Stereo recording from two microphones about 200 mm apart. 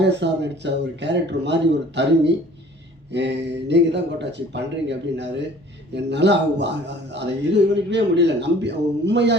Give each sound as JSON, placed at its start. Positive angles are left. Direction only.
{"t": 0.0, "sound": "speech", "side_deg": -60}